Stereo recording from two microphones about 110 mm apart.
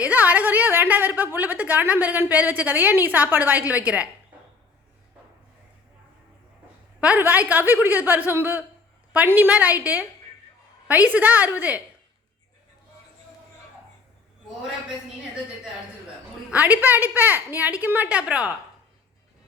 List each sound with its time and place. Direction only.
0.0 s a sound: 15° right (ahead or behind)
1.2 s a woman's voice: 15° right (ahead or behind)
7.0 s a woman's voice: 15° right (ahead or behind)
16.5 s a woman's voice: 15° right (ahead or behind)